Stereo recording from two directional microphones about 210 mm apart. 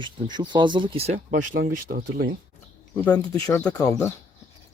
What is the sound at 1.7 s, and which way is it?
Speech, 45° right (ahead or behind).